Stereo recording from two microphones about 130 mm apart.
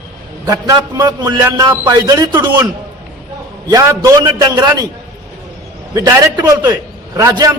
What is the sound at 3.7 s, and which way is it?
A man's voice, 25° right (ahead or behind).